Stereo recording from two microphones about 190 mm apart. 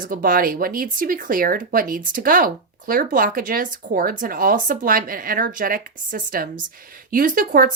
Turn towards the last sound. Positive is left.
turn(degrees=-45)  # may be behind; listen again after turning